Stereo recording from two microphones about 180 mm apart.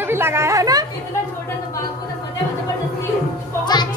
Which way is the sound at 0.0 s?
15° right (ahead or behind).